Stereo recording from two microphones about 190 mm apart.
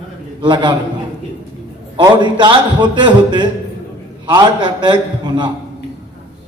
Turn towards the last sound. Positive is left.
turn(degrees=-25)  # may be behind; listen again after turning